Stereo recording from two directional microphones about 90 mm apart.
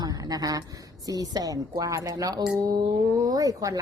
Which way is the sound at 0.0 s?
45° right (ahead or behind).